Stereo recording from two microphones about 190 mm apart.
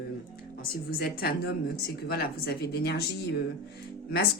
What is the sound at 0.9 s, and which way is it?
Speech, 55° left (ahead or behind).